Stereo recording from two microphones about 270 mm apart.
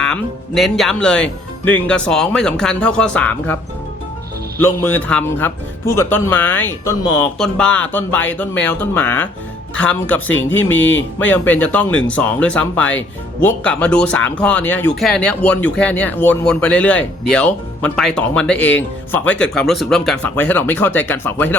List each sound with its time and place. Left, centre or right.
0.0 s speech: centre
4.6 s speech: centre